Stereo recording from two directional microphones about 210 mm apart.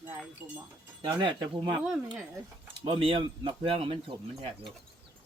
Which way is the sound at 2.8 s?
25° right (ahead or behind).